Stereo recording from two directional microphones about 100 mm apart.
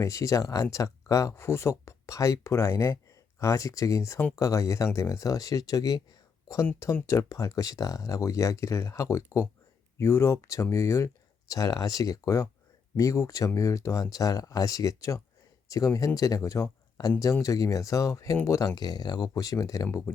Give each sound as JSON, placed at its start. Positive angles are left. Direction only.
{"t": 0.0, "sound": "speech", "side_deg": 35}
{"t": 7.1, "sound": "speech", "side_deg": 30}